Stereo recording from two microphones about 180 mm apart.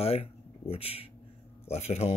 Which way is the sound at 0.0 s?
35° left (ahead or behind).